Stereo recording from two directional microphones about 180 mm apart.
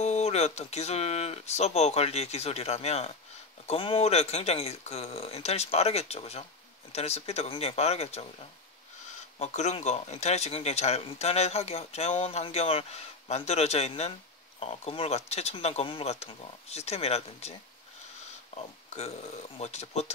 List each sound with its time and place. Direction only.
0.0 s speech: 40° left (ahead or behind)
9.4 s speech: 40° left (ahead or behind)
18.6 s speech: 35° left (ahead or behind)